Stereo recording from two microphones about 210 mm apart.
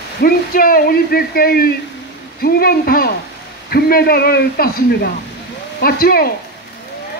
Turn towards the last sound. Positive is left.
turn(degrees=45)  # may be behind; listen again after turning